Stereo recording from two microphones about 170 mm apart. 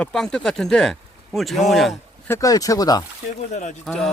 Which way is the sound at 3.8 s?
Centre (ahead or behind).